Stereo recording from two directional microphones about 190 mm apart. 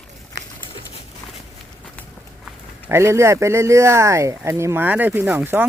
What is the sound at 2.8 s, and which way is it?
Speech, 15° right (ahead or behind).